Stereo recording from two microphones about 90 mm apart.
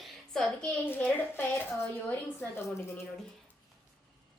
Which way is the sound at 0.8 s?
20° left (ahead or behind).